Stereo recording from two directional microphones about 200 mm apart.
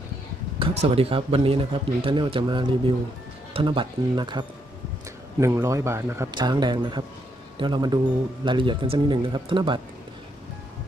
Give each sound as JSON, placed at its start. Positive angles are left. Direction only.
{"t": 0.6, "sound": "speech", "side_deg": -30}